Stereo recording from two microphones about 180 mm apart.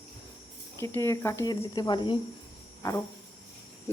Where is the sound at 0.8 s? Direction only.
15° left (ahead or behind).